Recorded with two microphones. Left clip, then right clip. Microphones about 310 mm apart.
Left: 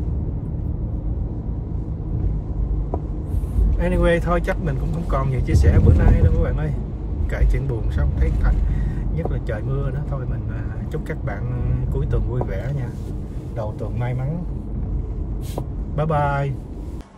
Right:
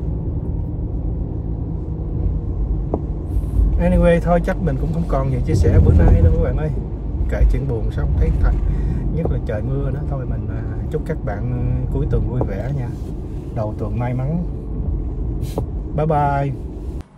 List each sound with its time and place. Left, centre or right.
3.8 s speech: right
9.1 s speech: right
12.4 s speech: right
15.5 s speech: right